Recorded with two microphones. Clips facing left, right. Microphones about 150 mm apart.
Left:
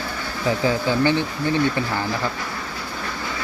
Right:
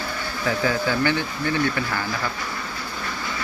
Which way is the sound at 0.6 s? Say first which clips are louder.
Left 3 dB; 25° left (ahead or behind).